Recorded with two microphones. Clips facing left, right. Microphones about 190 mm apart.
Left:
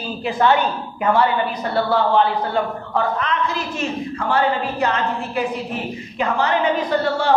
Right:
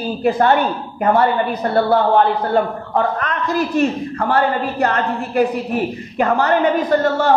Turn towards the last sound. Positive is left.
turn(degrees=-45)  # may be behind; listen again after turning